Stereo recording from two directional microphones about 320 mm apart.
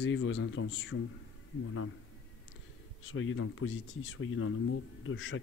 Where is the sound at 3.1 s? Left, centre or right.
Left.